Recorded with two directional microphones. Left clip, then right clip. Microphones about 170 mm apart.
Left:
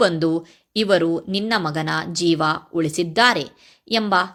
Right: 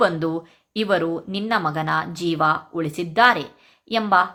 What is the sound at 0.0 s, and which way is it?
Speech, 40° left (ahead or behind).